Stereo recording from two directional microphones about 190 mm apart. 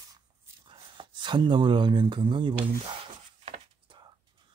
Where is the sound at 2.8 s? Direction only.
30° right (ahead or behind).